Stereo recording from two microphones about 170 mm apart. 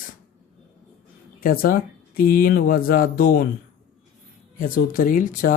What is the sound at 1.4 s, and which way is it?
Speech, 55° left (ahead or behind).